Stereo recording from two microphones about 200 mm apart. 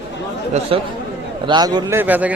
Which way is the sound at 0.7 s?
30° right (ahead or behind).